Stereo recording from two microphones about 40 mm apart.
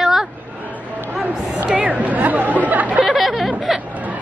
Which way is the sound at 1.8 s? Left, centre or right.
Right.